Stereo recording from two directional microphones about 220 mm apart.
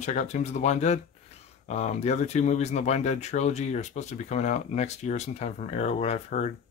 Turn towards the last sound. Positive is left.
turn(degrees=30)  # may be behind; listen again after turning